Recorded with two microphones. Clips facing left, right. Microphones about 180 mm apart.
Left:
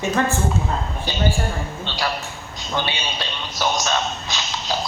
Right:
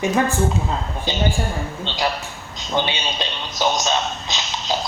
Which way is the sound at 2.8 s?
20° right (ahead or behind).